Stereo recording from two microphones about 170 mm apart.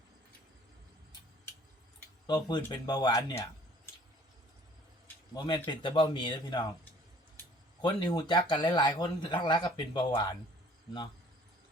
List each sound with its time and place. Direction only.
2.2 s speech: 25° left (ahead or behind)
5.3 s speech: 25° left (ahead or behind)
7.8 s speech: 25° left (ahead or behind)